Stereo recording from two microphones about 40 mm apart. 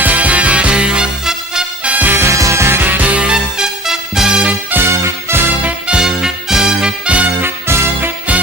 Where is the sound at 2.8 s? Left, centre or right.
Right.